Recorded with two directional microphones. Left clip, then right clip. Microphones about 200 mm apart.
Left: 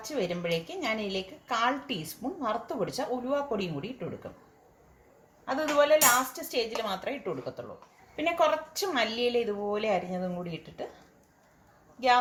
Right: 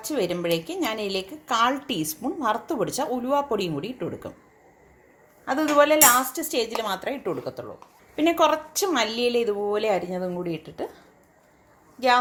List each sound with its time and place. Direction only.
0.0 s a woman's voice: 45° right (ahead or behind)
5.5 s a woman's voice: 45° right (ahead or behind)